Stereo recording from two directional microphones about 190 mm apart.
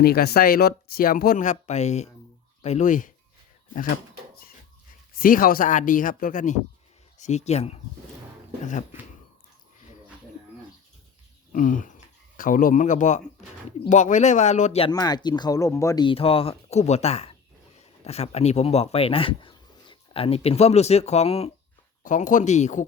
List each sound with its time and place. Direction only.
0.0 s speech: 55° left (ahead or behind)
5.1 s speech: 50° left (ahead or behind)
11.5 s speech: 45° left (ahead or behind)
14.9 s speech: 20° left (ahead or behind)
22.0 s speech: 45° left (ahead or behind)